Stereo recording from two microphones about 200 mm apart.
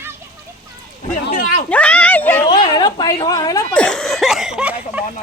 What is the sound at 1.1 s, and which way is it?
Speech, 40° left (ahead or behind).